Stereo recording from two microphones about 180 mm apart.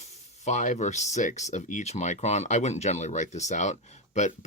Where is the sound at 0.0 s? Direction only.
40° left (ahead or behind).